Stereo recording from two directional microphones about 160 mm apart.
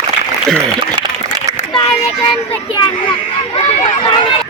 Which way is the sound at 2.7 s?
30° left (ahead or behind).